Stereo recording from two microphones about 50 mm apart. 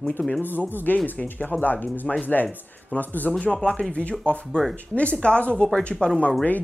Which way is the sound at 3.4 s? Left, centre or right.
Centre.